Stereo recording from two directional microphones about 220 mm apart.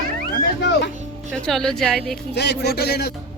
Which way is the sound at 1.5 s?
Centre (ahead or behind).